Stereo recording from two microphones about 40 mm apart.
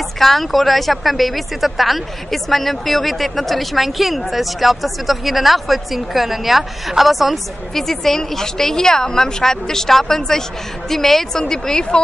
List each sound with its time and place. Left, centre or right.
0.2 s a woman's voice: centre